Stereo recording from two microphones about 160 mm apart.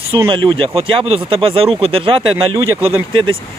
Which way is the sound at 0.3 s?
30° right (ahead or behind).